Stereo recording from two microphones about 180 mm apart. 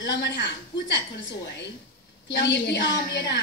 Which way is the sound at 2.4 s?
75° left (ahead or behind).